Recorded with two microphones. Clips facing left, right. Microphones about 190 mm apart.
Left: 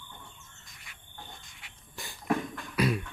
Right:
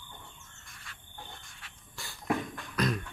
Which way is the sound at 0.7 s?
15° left (ahead or behind).